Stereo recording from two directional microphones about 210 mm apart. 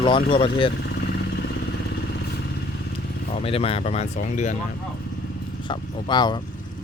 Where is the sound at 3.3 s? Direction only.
30° left (ahead or behind).